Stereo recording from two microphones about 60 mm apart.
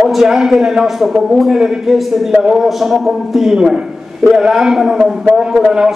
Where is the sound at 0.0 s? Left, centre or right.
Centre.